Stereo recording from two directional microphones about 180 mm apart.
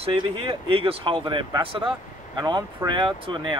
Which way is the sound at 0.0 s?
30° right (ahead or behind).